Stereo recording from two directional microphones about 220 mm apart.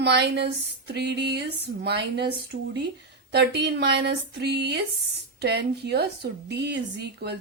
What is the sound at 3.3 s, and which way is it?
A woman's voice, 50° right (ahead or behind).